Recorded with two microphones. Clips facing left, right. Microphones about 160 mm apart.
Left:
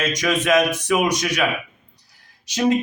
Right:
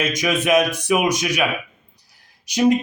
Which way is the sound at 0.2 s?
10° right (ahead or behind).